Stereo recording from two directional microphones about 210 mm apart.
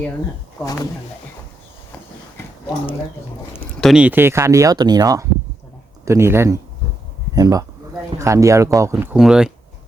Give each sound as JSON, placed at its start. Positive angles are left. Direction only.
{"t": 0.6, "sound": "speech", "side_deg": 15}
{"t": 3.5, "sound": "speech", "side_deg": 0}